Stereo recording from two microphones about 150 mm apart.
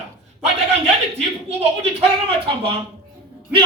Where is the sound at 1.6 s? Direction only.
45° right (ahead or behind).